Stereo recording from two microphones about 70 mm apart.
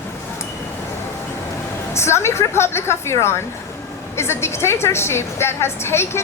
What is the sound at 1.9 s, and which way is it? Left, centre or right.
A woman's voice, left.